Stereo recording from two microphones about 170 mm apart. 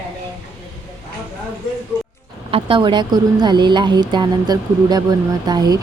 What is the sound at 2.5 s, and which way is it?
Speech, 30° right (ahead or behind).